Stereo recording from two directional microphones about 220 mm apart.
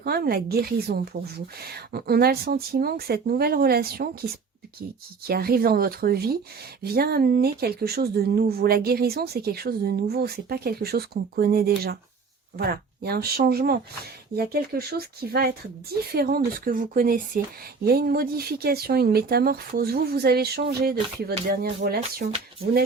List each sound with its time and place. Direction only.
0.0 s speech: 45° right (ahead or behind)